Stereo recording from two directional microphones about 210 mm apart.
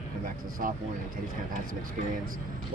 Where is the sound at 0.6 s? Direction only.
45° right (ahead or behind).